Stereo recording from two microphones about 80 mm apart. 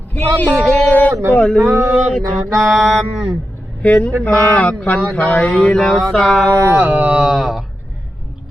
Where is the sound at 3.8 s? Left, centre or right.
Centre.